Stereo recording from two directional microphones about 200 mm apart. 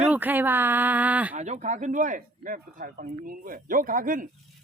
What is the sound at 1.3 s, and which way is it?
Speech, 35° right (ahead or behind).